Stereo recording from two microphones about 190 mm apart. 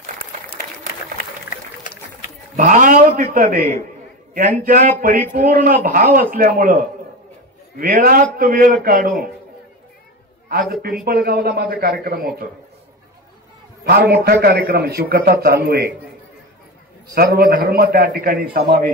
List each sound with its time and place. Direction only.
2.5 s a man's voice: 40° right (ahead or behind)
10.7 s a man's voice: 50° right (ahead or behind)
13.8 s a man's voice: 55° right (ahead or behind)
17.1 s a man's voice: 50° right (ahead or behind)